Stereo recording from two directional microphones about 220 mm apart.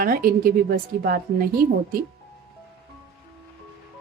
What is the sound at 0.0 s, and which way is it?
A woman's voice, 40° right (ahead or behind).